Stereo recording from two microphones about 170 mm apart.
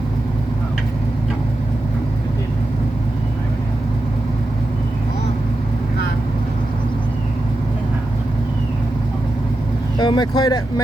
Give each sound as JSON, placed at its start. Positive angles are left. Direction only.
{"t": 10.0, "sound": "speech", "side_deg": 25}